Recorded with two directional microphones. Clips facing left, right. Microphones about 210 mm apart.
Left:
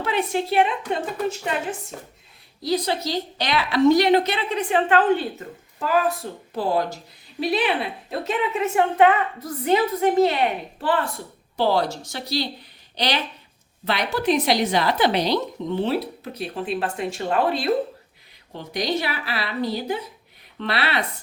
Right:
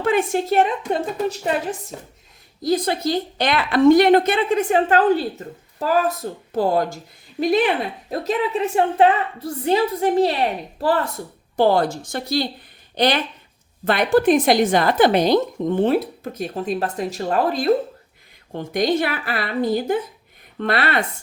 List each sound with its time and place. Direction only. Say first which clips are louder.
0.0 s a woman's voice: right 4 dB; 50° right (ahead or behind)
2.6 s a woman's voice: right 4 dB; 50° right (ahead or behind)
11.5 s a woman's voice: right 4 dB; 50° right (ahead or behind)
18.5 s a woman's voice: right 5 dB; 50° right (ahead or behind)